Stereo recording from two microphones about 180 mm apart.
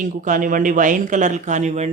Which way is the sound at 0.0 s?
45° right (ahead or behind).